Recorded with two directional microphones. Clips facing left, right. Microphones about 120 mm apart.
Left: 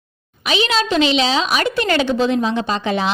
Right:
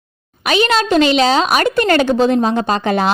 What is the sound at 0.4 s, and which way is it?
A woman's voice, 50° right (ahead or behind).